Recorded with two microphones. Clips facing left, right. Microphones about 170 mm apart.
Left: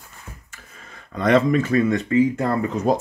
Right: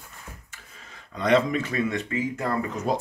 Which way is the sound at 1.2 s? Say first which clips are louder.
Left 4 dB; 55° left (ahead or behind).